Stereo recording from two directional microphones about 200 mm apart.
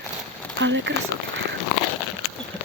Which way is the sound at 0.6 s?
65° right (ahead or behind).